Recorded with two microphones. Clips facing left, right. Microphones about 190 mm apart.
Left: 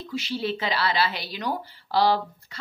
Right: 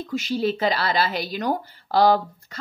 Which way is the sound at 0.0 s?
45° right (ahead or behind).